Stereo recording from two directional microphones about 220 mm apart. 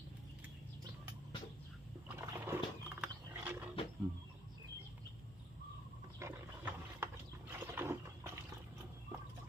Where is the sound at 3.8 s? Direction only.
25° left (ahead or behind).